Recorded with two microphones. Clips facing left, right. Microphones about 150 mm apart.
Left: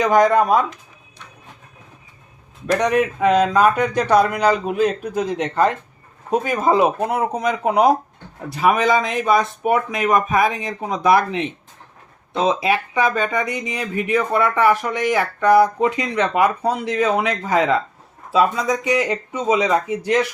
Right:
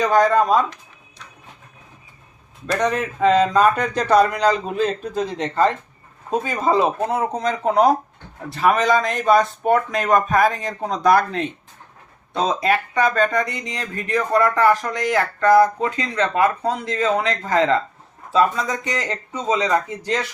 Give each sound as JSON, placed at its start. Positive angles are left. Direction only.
{"t": 0.0, "sound": "speech", "side_deg": 15}
{"t": 2.6, "sound": "speech", "side_deg": 10}
{"t": 12.9, "sound": "speech", "side_deg": 10}